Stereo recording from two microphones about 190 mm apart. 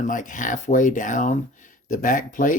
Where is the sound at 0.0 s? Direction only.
45° left (ahead or behind).